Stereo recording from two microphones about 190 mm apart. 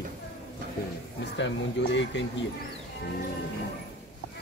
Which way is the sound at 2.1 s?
70° left (ahead or behind).